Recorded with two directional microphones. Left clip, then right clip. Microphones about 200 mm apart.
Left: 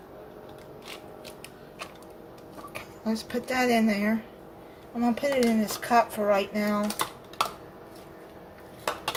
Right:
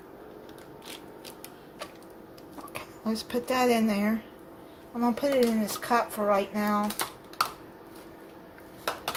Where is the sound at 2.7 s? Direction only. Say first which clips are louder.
Left 1 dB; 30° right (ahead or behind).